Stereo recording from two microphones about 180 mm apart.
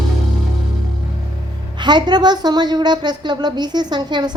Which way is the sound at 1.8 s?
25° right (ahead or behind).